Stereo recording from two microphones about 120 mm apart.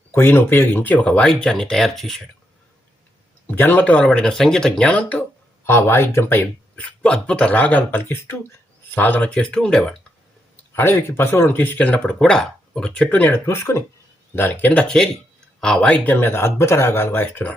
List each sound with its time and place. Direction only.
0.1 s speech: 20° left (ahead or behind); by 2.2 s centre (ahead or behind)
3.4 s speech: 15° left (ahead or behind)
10.8 s speech: 20° left (ahead or behind)